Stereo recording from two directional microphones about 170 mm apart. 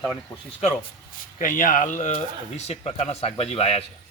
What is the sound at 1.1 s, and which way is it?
Speech, 55° left (ahead or behind).